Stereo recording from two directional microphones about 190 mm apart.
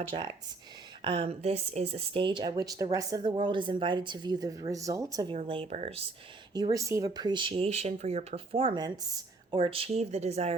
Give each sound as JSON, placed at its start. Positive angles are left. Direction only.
{"t": 0.1, "sound": "speech", "side_deg": -25}
{"t": 5.4, "sound": "speech", "side_deg": -30}
{"t": 6.5, "sound": "speech", "side_deg": -20}